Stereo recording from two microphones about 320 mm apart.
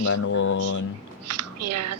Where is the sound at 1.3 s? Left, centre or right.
Right.